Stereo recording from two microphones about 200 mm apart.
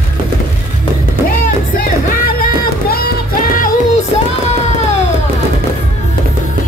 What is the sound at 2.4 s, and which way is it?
Music, 50° left (ahead or behind).